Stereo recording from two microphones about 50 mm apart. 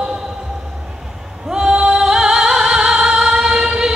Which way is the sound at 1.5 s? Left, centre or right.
Centre.